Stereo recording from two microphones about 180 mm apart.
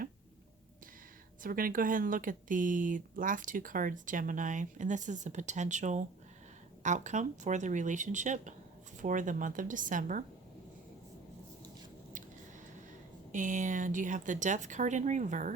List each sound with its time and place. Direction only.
1.4 s speech: 50° right (ahead or behind)
13.3 s speech: 45° right (ahead or behind)